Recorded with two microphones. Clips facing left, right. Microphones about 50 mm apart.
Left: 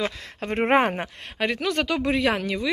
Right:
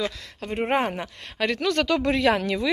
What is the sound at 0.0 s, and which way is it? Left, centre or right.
Speech, left.